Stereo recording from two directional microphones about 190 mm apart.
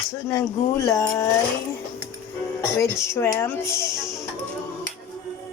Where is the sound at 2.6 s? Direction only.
15° left (ahead or behind).